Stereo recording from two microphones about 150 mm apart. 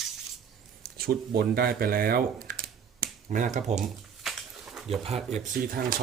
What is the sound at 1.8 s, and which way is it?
Computer keyboard, 75° right (ahead or behind).